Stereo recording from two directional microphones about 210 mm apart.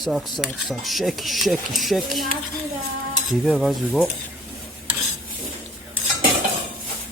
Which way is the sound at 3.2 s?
Centre (ahead or behind).